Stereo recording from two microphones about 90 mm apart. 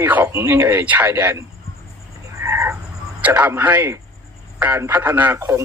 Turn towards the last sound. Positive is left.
turn(degrees=-30)  # may be behind; listen again after turning